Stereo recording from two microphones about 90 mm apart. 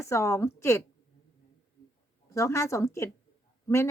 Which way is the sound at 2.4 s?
30° left (ahead or behind).